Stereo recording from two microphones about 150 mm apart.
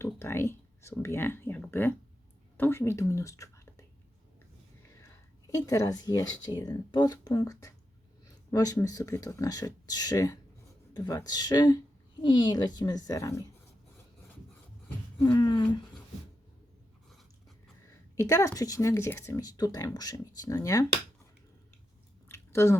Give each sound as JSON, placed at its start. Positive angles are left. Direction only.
{"t": 0.0, "sound": "a sound", "side_deg": 15}
{"t": 0.9, "sound": "speech", "side_deg": 15}
{"t": 5.5, "sound": "speech", "side_deg": 20}
{"t": 15.2, "sound": "speech", "side_deg": 25}
{"t": 18.2, "sound": "speech", "side_deg": 20}
{"t": 22.3, "sound": "squish", "side_deg": 15}